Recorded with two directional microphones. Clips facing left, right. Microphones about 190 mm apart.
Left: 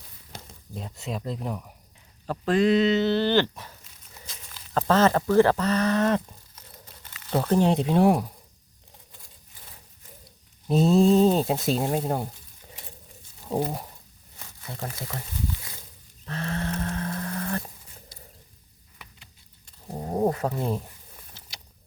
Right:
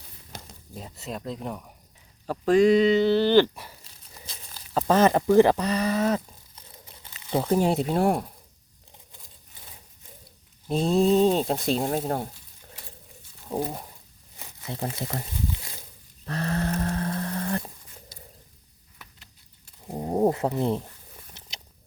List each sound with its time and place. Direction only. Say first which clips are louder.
0.7 s speech: left 2 dB; 5° right (ahead or behind)
3.8 s a sound: right 1 dB; 35° right (ahead or behind)
4.7 s speech: right 1 dB; 10° right (ahead or behind)
10.7 s speech: left 2 dB; centre (ahead or behind)
13.5 s speech: left 2 dB; 25° left (ahead or behind)
14.3 s crumpling: right 4 dB; 20° right (ahead or behind)
16.2 s livestock: right 3 dB; 40° right (ahead or behind)
18.9 s a sound: left 1 dB; centre (ahead or behind)
19.9 s bird: right 3 dB; 15° right (ahead or behind)
20.3 s speech: right 2 dB; 20° right (ahead or behind)
21.4 s a sound: right 2 dB; 20° right (ahead or behind)